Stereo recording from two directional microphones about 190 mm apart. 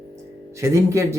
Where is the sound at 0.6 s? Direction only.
15° right (ahead or behind).